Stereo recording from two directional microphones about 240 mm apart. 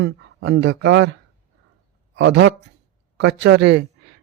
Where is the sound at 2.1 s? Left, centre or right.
Right.